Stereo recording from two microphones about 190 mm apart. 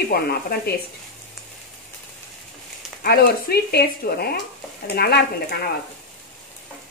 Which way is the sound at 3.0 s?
55° left (ahead or behind).